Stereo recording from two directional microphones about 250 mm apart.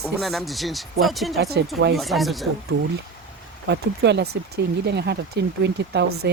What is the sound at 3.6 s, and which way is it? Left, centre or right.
Speech, right.